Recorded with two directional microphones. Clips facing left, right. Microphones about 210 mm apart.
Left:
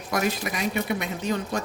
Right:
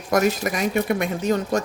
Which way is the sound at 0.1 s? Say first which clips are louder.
Right 6 dB; 45° right (ahead or behind).